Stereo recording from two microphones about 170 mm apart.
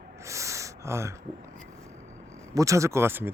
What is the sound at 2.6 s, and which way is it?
Speech, 20° right (ahead or behind).